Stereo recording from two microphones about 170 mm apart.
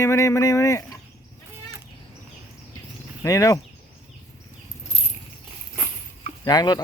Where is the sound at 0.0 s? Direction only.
15° left (ahead or behind).